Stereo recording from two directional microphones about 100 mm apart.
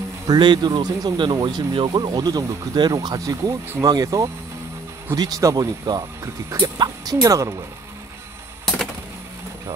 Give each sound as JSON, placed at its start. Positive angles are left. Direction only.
{"t": 0.3, "sound": "speech", "side_deg": -45}